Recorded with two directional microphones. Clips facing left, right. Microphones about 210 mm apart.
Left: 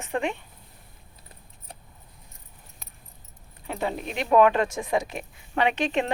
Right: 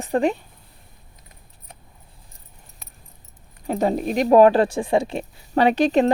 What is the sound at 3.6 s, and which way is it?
Speech, 40° right (ahead or behind).